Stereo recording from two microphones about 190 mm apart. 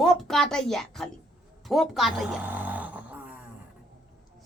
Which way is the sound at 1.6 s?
Centre (ahead or behind).